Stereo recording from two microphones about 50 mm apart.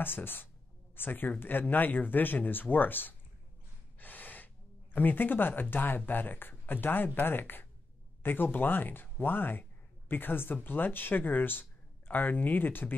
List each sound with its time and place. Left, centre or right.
0.0 s speech: left
4.0 s gasp: left
4.9 s speech: left